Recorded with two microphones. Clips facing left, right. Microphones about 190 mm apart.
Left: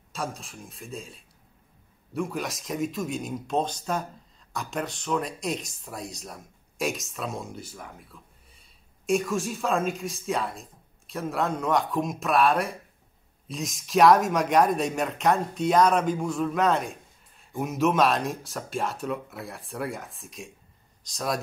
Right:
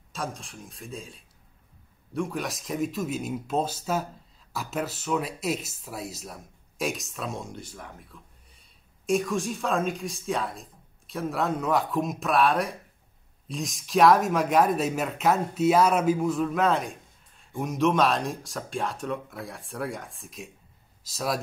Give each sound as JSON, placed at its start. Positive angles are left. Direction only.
{"t": 0.1, "sound": "speech", "side_deg": 0}